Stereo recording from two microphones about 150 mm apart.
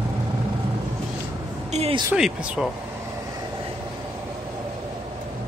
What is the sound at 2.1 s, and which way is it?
Speech, 5° right (ahead or behind).